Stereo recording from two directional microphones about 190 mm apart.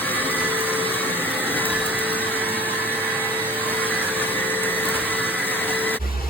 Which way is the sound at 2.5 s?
10° left (ahead or behind).